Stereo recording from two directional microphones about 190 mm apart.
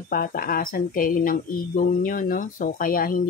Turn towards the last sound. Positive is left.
turn(degrees=50)  # may be behind; listen again after turning